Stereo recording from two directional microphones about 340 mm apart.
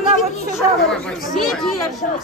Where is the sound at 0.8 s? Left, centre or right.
Centre.